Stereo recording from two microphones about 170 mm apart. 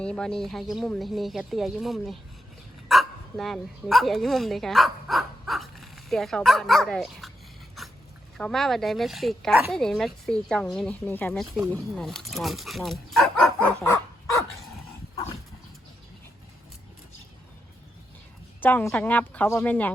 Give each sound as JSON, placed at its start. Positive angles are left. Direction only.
{"t": 0.0, "sound": "a woman's voice", "side_deg": 5}
{"t": 8.4, "sound": "a woman's voice", "side_deg": 5}
{"t": 13.8, "sound": "dog", "side_deg": 20}
{"t": 18.6, "sound": "a woman's voice", "side_deg": 10}